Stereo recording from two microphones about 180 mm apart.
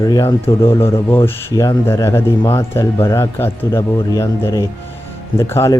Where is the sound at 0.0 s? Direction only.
15° left (ahead or behind).